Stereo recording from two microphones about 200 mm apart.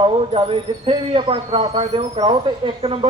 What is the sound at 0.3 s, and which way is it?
Speech, 25° right (ahead or behind).